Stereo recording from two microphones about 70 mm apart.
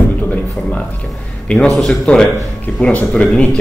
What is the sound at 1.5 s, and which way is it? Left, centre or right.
Speech, centre.